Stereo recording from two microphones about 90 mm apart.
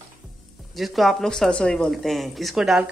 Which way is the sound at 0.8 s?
Centre (ahead or behind).